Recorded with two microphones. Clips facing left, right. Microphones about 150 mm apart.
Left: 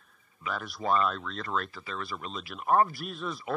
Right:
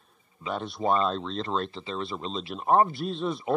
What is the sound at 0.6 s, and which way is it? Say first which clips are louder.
Speech: right 2 dB; 25° right (ahead or behind).